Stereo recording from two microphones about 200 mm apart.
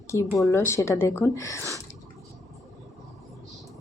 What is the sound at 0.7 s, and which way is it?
Speech, 15° left (ahead or behind).